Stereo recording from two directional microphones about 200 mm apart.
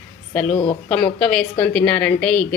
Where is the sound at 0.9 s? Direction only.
5° left (ahead or behind).